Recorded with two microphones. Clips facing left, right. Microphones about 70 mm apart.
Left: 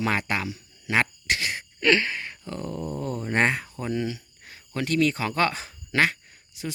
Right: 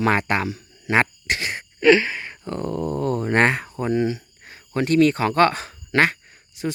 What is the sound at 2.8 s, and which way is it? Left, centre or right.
Speech, right.